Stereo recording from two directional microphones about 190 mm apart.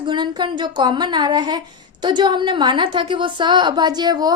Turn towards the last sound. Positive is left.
turn(degrees=-20)  # may be behind; listen again after turning